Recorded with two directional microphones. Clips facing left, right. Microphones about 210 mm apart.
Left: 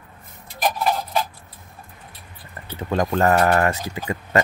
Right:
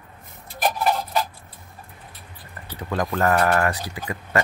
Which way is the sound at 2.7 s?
25° left (ahead or behind).